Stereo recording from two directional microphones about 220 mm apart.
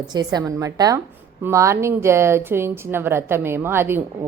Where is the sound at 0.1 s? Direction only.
20° right (ahead or behind).